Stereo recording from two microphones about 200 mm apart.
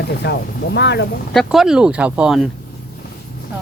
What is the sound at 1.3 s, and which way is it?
Speech, centre (ahead or behind).